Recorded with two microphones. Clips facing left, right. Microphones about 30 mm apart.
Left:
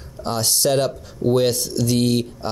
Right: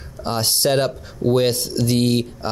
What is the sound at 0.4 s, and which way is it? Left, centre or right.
Speech, right.